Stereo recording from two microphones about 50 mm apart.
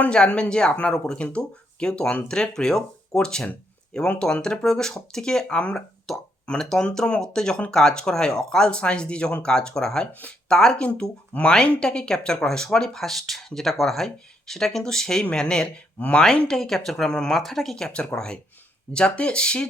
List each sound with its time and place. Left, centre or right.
0.1 s speech: centre
6.4 s a sound: centre
6.8 s speech: centre
10.1 s speech: left
10.5 s speech: centre
11.3 s speech: left
11.8 s speech: centre
16.0 s speech: left
16.5 s speech: centre
17.1 s speech: centre
17.4 s speech: centre; by 19.6 s left